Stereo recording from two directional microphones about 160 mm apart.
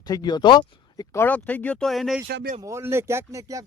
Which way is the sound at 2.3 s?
90° right.